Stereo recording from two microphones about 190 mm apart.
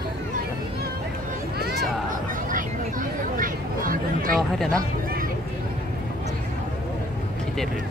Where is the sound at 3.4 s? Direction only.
45° right (ahead or behind).